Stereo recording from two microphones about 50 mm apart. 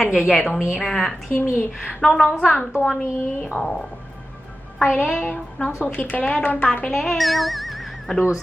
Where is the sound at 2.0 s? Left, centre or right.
Centre.